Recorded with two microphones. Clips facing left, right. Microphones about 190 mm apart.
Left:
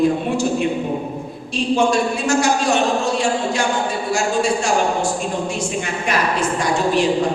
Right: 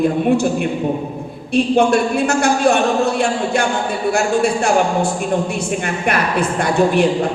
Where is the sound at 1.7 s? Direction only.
60° right (ahead or behind).